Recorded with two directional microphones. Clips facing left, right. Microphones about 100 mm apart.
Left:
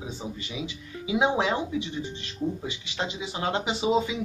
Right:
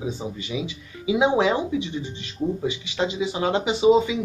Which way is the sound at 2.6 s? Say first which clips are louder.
Right 7 dB; 5° right (ahead or behind).